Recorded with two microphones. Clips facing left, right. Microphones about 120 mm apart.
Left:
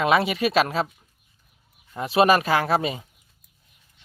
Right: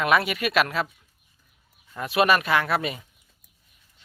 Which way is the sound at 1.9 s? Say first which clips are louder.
Left 3 dB; 30° left (ahead or behind).